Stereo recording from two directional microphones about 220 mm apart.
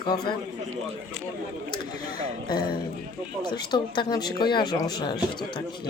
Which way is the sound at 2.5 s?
20° left (ahead or behind).